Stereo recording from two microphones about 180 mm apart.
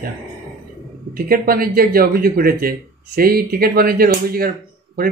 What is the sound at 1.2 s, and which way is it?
Speech, 55° right (ahead or behind).